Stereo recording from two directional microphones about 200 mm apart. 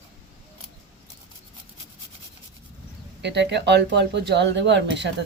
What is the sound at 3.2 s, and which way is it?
Speech, 60° right (ahead or behind).